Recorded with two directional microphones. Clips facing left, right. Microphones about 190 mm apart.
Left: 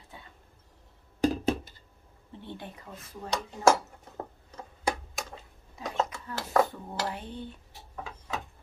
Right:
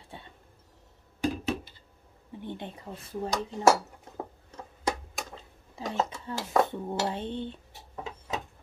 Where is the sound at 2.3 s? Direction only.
15° right (ahead or behind); by 3.3 s 30° right (ahead or behind).